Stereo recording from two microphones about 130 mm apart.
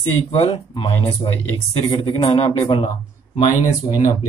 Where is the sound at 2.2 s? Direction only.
50° left (ahead or behind).